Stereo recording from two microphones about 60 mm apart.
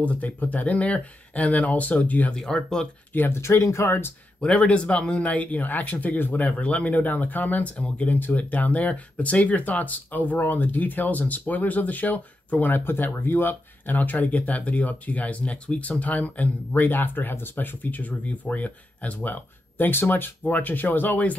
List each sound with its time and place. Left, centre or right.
0.0 s speech: left
2.3 s speech: centre
3.1 s speech: left
4.4 s speech: centre